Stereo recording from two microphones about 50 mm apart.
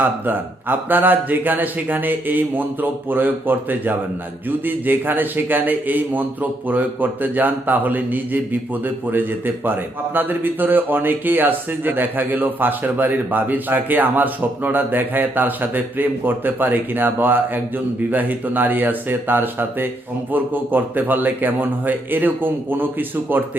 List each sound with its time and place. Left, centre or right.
0.0 s speech: right
10.2 s speech: right